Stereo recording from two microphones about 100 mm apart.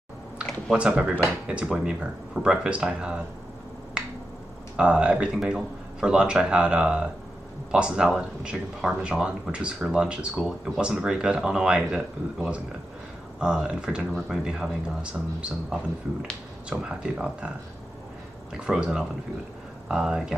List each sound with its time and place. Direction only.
0.7 s speech: 10° right (ahead or behind)
4.0 s finger snapping: 10° right (ahead or behind)
4.7 s speech: 10° right (ahead or behind)
18.5 s speech: 10° right (ahead or behind)